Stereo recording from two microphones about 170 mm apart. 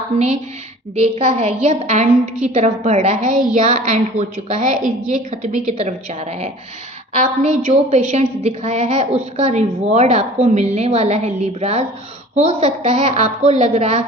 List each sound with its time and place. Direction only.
0.1 s a woman's voice: 40° right (ahead or behind)